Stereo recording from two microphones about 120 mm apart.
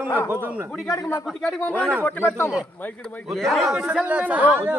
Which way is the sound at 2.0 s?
15° left (ahead or behind).